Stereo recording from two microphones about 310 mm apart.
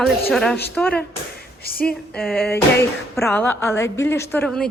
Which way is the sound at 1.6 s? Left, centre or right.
Left.